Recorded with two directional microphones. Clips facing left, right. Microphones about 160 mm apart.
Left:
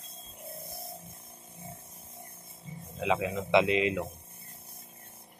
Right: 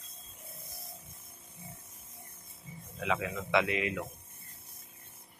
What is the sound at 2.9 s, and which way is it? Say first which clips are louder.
A man's voice: left 4 dB; 20° left (ahead or behind).